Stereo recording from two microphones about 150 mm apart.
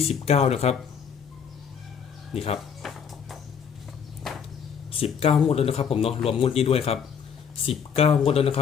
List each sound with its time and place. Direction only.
0.3 s speech: 45° left (ahead or behind)
2.3 s speech: 40° left (ahead or behind)
2.8 s music: centre (ahead or behind)
4.2 s walk: centre (ahead or behind)
4.9 s speech: 40° left (ahead or behind)